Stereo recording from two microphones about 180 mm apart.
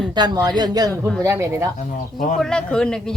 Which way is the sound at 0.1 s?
25° right (ahead or behind).